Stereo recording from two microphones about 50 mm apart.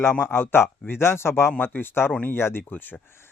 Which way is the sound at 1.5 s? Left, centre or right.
Left.